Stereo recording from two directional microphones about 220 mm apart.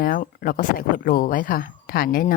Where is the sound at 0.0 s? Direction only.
40° left (ahead or behind).